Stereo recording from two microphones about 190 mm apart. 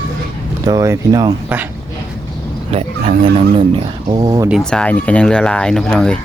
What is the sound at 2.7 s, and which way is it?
Speech, 30° right (ahead or behind).